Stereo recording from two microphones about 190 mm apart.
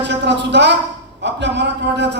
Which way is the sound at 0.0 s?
65° right (ahead or behind).